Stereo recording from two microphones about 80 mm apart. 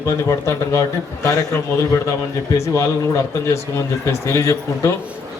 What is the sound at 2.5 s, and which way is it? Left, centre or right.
A man's voice, left.